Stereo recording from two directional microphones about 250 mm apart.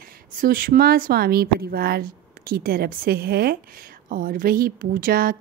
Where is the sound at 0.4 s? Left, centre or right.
Right.